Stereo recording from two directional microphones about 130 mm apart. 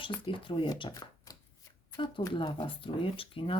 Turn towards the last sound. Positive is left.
turn(degrees=45)  # may be behind; listen again after turning